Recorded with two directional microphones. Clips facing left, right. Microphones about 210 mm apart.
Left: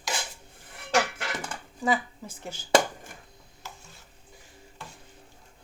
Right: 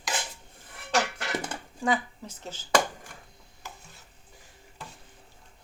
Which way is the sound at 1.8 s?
5° left (ahead or behind).